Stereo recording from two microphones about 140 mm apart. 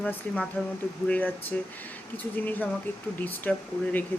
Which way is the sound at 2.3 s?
10° left (ahead or behind).